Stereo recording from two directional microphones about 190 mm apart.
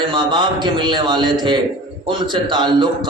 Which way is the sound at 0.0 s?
25° right (ahead or behind).